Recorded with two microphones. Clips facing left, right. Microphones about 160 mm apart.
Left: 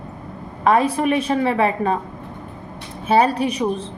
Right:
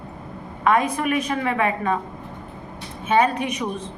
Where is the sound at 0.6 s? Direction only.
30° left (ahead or behind).